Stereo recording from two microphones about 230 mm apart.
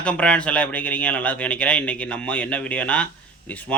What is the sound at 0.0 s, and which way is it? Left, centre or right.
A man's voice, centre.